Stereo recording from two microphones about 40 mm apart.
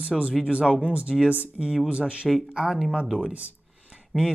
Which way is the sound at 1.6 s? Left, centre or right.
Centre.